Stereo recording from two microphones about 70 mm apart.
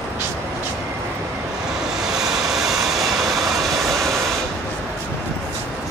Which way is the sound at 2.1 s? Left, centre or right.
Centre.